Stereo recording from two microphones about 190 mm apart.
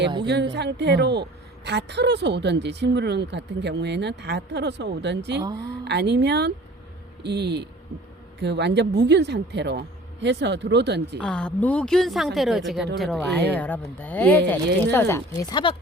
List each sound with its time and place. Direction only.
0.3 s a woman's voice: 65° right (ahead or behind)
11.2 s a woman's voice: 5° left (ahead or behind); by 15.7 s 20° left (ahead or behind)